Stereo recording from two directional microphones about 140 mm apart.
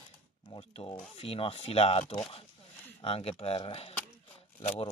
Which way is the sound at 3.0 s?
40° left (ahead or behind).